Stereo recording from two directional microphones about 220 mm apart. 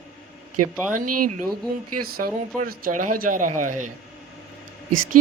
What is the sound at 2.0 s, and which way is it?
Speech, 40° right (ahead or behind).